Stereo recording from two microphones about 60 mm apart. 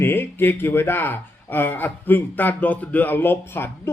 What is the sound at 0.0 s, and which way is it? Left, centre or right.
Speech, left.